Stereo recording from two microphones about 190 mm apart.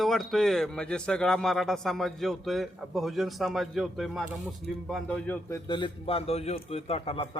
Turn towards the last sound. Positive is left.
turn(degrees=30)  # may be behind; listen again after turning